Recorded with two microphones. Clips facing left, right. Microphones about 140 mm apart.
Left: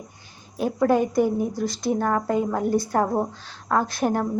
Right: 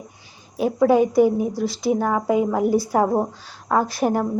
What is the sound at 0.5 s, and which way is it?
A woman's voice, centre (ahead or behind).